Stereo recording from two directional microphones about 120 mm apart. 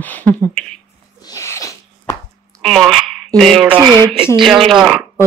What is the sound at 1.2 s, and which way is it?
Zipper, 25° left (ahead or behind).